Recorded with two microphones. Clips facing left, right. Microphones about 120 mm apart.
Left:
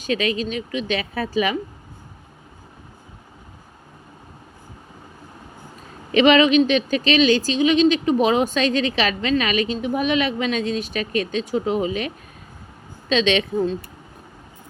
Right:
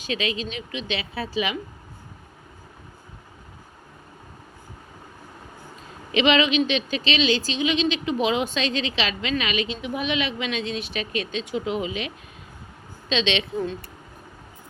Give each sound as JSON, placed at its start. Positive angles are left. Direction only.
{"t": 0.0, "sound": "speech", "side_deg": 45}
{"t": 6.1, "sound": "speech", "side_deg": 45}